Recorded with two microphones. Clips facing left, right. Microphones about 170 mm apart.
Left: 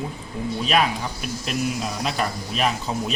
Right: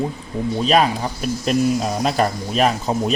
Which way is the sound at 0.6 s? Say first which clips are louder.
Right 5 dB; 35° right (ahead or behind).